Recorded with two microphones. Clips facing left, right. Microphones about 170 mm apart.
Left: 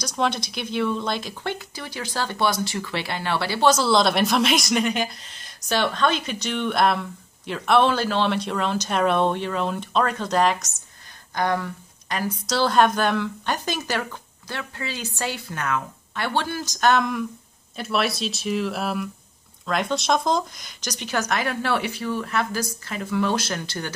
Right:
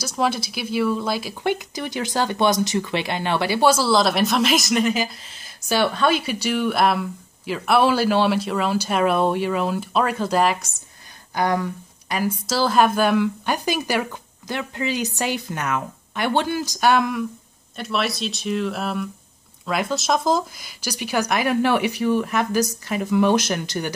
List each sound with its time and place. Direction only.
0.0 s speech: 5° right (ahead or behind)